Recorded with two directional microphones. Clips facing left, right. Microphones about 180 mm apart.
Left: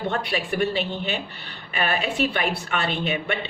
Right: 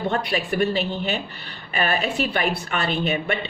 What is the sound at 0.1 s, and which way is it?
Speech, 40° right (ahead or behind).